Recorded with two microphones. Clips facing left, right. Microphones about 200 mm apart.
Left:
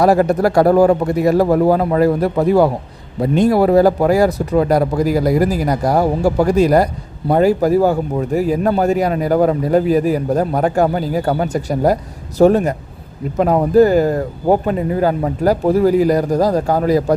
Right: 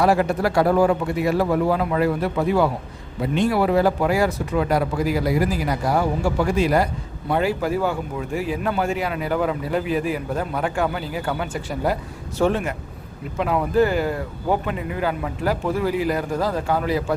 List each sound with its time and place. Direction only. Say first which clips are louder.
0.0 s a man's voice: left 6 dB; 40° left (ahead or behind)